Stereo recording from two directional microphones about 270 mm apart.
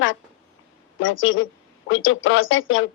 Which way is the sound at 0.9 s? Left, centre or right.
Left.